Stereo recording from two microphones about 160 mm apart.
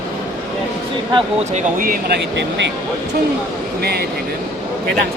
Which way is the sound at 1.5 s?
60° right (ahead or behind).